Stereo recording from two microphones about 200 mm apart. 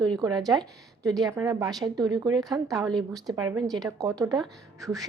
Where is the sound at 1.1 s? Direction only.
Centre (ahead or behind).